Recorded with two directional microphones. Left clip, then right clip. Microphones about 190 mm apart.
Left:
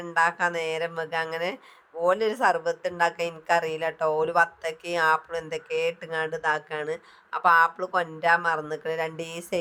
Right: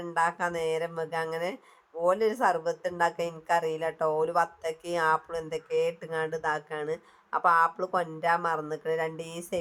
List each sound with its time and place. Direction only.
0.0 s speech: 20° left (ahead or behind)